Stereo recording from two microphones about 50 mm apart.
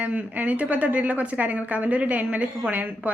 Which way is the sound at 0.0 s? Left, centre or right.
Right.